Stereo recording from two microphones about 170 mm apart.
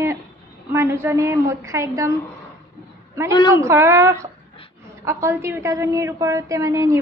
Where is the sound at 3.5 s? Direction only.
15° right (ahead or behind).